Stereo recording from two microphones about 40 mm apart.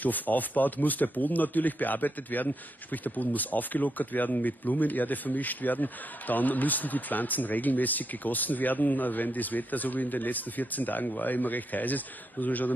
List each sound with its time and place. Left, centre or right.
0.0 s speech: left